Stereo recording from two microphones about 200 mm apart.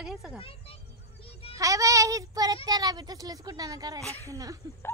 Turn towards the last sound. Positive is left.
turn(degrees=-15)  # may be behind; listen again after turning